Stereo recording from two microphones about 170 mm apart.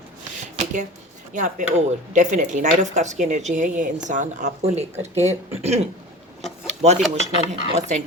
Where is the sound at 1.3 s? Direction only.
50° right (ahead or behind).